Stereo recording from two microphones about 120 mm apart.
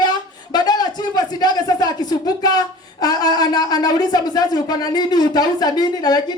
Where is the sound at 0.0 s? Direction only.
35° left (ahead or behind).